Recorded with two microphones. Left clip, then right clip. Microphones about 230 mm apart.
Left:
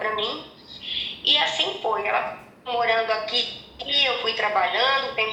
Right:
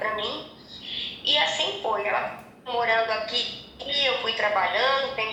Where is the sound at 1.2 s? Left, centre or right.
Left.